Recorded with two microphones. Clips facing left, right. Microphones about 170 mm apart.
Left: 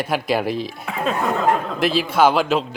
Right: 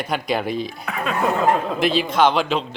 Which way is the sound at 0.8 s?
25° left (ahead or behind).